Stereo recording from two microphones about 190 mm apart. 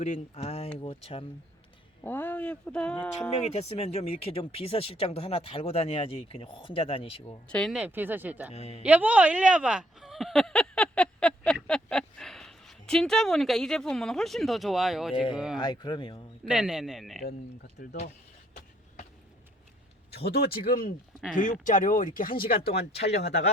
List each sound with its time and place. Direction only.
0.0 s speech: 35° left (ahead or behind)
2.0 s speech: 10° left (ahead or behind)
3.2 s speech: 35° left (ahead or behind)
7.4 s speech: 5° left (ahead or behind)
7.8 s speech: 10° right (ahead or behind)
8.5 s speech: 35° left (ahead or behind)
8.8 s speech: 10° right (ahead or behind)
15.1 s speech: 25° left (ahead or behind)
16.4 s speech: 5° right (ahead or behind)
17.7 s speech: 45° left (ahead or behind)
20.1 s speech: 55° left (ahead or behind)